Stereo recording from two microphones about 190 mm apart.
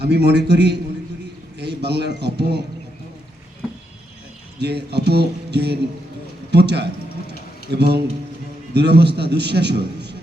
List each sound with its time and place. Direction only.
0.0 s a man's voice: 60° right (ahead or behind)
4.6 s a man's voice: 60° right (ahead or behind)